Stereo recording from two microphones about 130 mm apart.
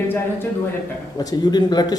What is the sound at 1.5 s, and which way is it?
Speech, 30° left (ahead or behind).